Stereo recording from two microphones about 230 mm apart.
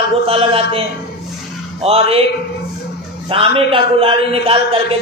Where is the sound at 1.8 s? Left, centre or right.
Right.